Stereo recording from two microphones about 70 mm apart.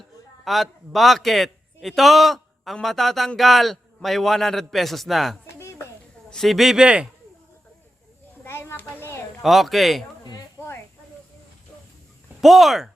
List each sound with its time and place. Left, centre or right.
0.4 s a man's voice: centre
8.4 s a sound: left
9.4 s a man's voice: centre
12.4 s a man's voice: centre